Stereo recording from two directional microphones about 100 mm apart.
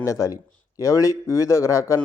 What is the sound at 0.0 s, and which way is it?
A man's voice, 30° left (ahead or behind).